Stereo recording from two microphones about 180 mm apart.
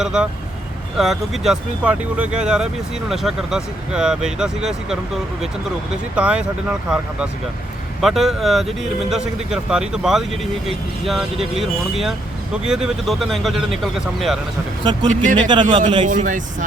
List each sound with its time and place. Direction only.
0.0 s speech: 5° right (ahead or behind)
6.1 s speech: 5° right (ahead or behind)
15.0 s a man's voice: 45° right (ahead or behind)
15.8 s a man's voice: 30° right (ahead or behind)
16.0 s a man's voice: 45° right (ahead or behind)